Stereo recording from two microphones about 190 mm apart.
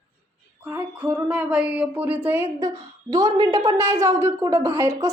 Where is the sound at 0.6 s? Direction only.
10° right (ahead or behind).